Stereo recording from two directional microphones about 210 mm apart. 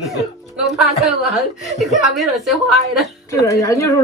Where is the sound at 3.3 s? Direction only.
15° left (ahead or behind).